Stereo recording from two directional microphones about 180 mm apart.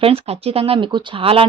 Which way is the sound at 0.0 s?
30° right (ahead or behind).